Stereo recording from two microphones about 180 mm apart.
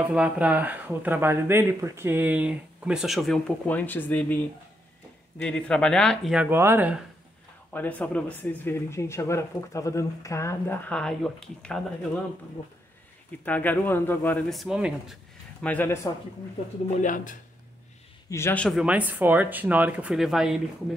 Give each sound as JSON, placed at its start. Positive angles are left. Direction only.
{"t": 0.1, "sound": "speech", "side_deg": -5}
{"t": 5.4, "sound": "speech", "side_deg": 5}
{"t": 7.7, "sound": "speech", "side_deg": 10}
{"t": 13.5, "sound": "speech", "side_deg": 10}
{"t": 14.5, "sound": "speech", "side_deg": 0}
{"t": 15.6, "sound": "speech", "side_deg": 10}
{"t": 17.0, "sound": "speech", "side_deg": 45}
{"t": 18.3, "sound": "speech", "side_deg": 10}
{"t": 18.8, "sound": "speech", "side_deg": -10}